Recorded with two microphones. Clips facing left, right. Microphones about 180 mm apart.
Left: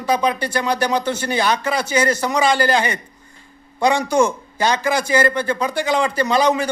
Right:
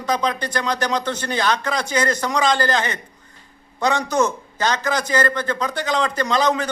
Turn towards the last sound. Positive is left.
turn(degrees=10)  # may be behind; listen again after turning